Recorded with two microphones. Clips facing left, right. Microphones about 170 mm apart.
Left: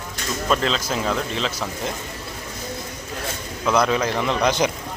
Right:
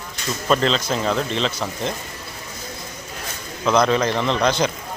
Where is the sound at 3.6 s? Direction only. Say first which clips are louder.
Right 2 dB; 5° left (ahead or behind).